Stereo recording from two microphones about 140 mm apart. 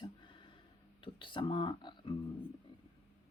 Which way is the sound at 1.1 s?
35° left (ahead or behind).